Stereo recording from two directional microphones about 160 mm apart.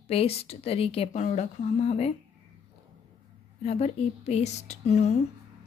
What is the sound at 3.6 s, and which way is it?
Speech, 40° left (ahead or behind).